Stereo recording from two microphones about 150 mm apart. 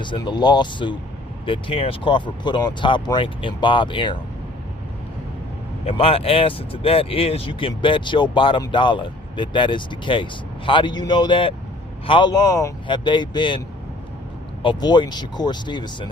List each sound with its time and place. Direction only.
0.0 s speech: 30° left (ahead or behind)
5.8 s speech: 40° left (ahead or behind)
14.6 s speech: 30° left (ahead or behind)